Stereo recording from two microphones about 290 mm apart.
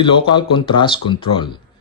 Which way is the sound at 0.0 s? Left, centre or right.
Centre.